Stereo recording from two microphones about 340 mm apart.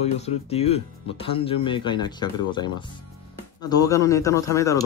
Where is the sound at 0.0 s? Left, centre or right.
Centre.